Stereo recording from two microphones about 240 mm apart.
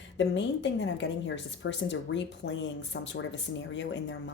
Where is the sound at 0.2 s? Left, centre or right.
Left.